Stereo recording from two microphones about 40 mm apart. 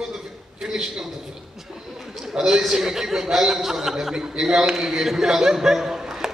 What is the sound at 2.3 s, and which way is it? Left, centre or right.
Speech, centre.